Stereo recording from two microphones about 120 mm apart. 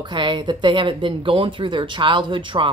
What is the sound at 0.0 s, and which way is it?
Speech, 40° right (ahead or behind).